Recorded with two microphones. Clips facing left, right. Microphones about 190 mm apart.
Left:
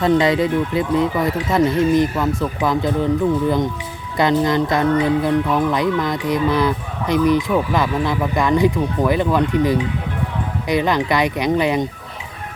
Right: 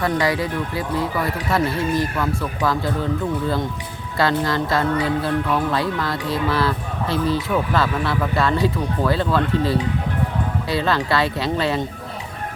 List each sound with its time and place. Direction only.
0.0 s speech: 20° left (ahead or behind)